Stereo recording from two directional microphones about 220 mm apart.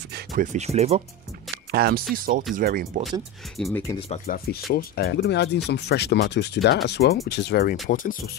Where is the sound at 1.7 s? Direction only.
45° right (ahead or behind).